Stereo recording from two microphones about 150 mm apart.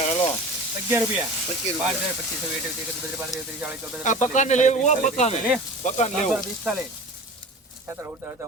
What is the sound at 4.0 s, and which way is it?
Speech, 55° left (ahead or behind).